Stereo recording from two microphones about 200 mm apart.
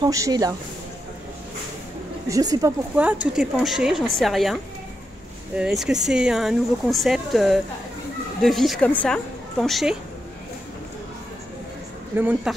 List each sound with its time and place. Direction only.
0.0 s speech: 20° right (ahead or behind)
2.2 s speech: 15° right (ahead or behind)
3.0 s speech: 5° right (ahead or behind)
5.6 s speech: centre (ahead or behind)
12.2 s speech: 10° right (ahead or behind)